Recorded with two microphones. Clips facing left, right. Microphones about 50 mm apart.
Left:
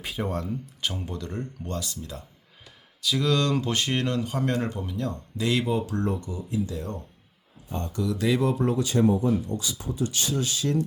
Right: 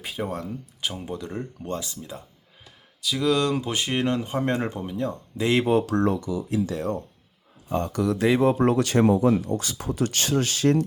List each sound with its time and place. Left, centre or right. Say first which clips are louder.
0.0 s speech: even; centre
3.0 s speech: right 2 dB; centre
4.0 s speech: right 2 dB; right
5.8 s speech: right 5 dB; right
8.2 s speech: right 4 dB; right
8.5 s speech: right 4 dB; right
9.4 s speech: right 3 dB; right